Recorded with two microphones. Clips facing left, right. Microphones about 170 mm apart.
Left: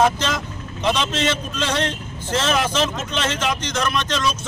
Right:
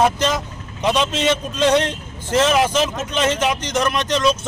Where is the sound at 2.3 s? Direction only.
10° right (ahead or behind).